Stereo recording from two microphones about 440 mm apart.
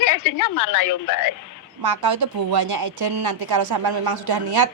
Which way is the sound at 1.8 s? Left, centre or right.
Right.